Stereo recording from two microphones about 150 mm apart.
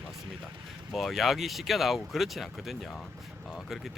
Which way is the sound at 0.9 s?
Centre (ahead or behind).